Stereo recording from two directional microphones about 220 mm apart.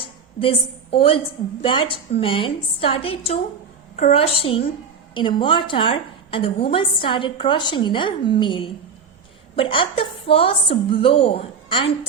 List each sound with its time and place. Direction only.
0.3 s a woman's voice: 25° left (ahead or behind)